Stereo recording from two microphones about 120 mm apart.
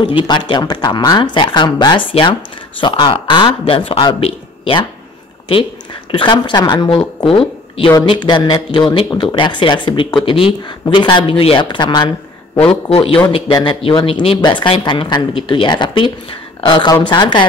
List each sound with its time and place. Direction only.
0.0 s speech: 40° left (ahead or behind)
6.1 s speech: 40° left (ahead or behind)
7.2 s a sound: 50° left (ahead or behind)
7.9 s speech: 40° left (ahead or behind)
12.9 s speech: 50° left (ahead or behind)
13.3 s speech: 40° left (ahead or behind)